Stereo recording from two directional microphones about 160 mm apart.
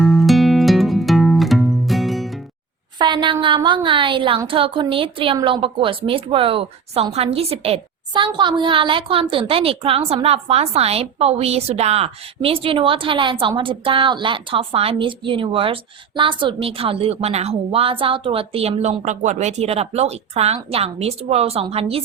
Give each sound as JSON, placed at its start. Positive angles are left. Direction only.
{"t": 0.0, "sound": "music", "side_deg": 0}
{"t": 3.0, "sound": "a sound", "side_deg": -30}
{"t": 3.4, "sound": "a woman's voice", "side_deg": -30}